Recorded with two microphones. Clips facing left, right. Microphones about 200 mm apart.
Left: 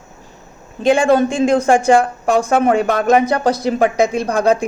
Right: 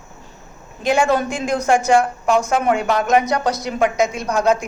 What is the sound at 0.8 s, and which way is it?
A woman's voice, 30° left (ahead or behind).